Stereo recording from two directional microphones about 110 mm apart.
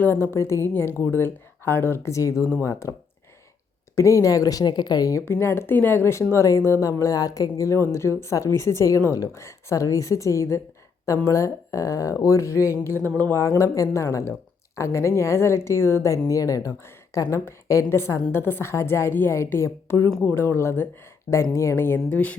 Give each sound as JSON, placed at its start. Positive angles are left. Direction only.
{"t": 0.0, "sound": "a woman's voice", "side_deg": 20}
{"t": 3.9, "sound": "speech", "side_deg": 30}
{"t": 5.2, "sound": "a woman's voice", "side_deg": 20}
{"t": 13.4, "sound": "a woman's voice", "side_deg": 30}